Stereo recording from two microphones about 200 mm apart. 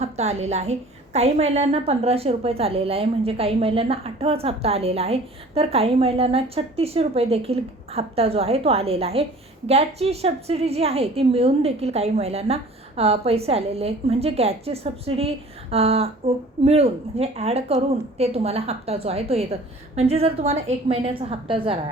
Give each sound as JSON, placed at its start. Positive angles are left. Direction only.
{"t": 0.0, "sound": "a woman's voice", "side_deg": -35}